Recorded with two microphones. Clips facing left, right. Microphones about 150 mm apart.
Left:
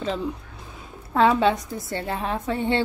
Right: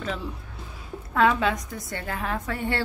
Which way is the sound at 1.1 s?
30° left (ahead or behind).